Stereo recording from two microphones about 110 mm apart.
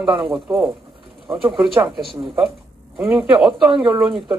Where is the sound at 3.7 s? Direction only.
45° right (ahead or behind).